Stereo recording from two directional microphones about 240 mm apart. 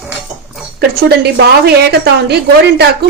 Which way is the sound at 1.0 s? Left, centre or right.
Right.